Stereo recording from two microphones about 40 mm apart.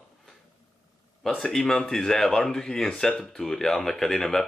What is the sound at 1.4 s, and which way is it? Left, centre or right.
Speech, centre.